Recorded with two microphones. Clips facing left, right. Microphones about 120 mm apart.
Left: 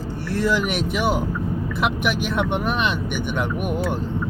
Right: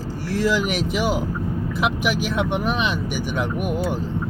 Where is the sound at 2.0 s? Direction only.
55° left (ahead or behind).